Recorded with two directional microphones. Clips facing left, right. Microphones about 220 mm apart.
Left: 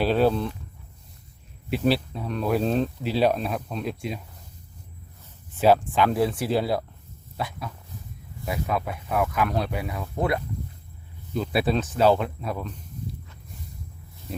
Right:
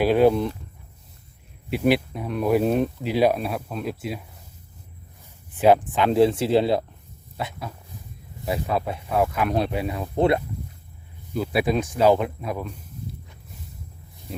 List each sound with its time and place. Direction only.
0.0 s speech: 15° right (ahead or behind)
1.8 s speech: 15° right (ahead or behind)
5.5 s speech: 20° right (ahead or behind)
8.5 s speech: 30° right (ahead or behind)
11.3 s speech: 10° right (ahead or behind)